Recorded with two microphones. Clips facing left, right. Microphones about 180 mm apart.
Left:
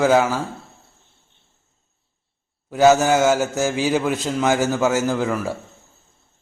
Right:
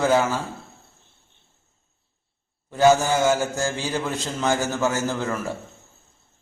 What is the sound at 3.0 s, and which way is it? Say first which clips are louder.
A man's voice: left 4 dB; 10° left (ahead or behind).